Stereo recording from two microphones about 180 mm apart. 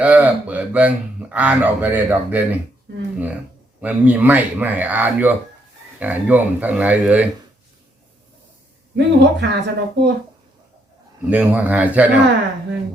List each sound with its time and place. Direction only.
0.0 s speech: 10° right (ahead or behind)
3.8 s speech: 10° right (ahead or behind)
9.0 s speech: 75° right (ahead or behind)
11.3 s speech: 10° right (ahead or behind)